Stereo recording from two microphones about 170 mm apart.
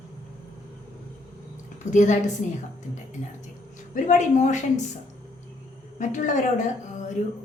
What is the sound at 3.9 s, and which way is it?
Speech, 45° left (ahead or behind).